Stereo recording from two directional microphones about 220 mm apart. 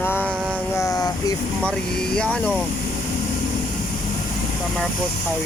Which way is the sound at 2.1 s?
5° left (ahead or behind).